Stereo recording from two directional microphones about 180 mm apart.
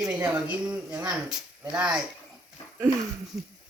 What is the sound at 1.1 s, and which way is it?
Speech, centre (ahead or behind).